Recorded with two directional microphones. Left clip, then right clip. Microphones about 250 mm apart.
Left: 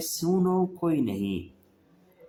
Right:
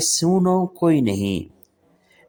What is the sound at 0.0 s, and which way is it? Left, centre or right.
Speech, right.